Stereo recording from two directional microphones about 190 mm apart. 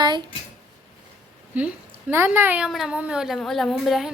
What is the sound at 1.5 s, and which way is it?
A woman's voice, 10° right (ahead or behind).